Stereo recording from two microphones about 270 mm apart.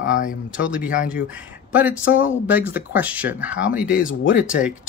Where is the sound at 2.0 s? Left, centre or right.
Left.